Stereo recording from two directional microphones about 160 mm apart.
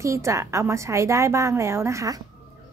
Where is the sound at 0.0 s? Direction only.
20° right (ahead or behind).